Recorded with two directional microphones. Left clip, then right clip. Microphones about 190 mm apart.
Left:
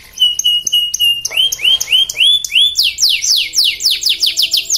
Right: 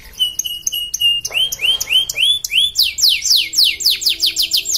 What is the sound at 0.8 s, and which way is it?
Alarm, 15° right (ahead or behind).